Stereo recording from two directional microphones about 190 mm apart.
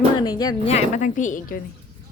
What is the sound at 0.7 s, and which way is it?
Speech, 40° left (ahead or behind).